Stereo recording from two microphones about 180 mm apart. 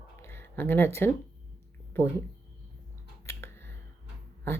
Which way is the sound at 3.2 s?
15° left (ahead or behind).